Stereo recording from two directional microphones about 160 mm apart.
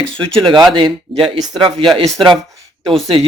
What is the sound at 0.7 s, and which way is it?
Speech, 30° right (ahead or behind).